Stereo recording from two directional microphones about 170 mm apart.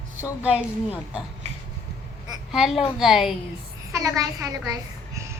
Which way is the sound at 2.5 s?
Centre (ahead or behind).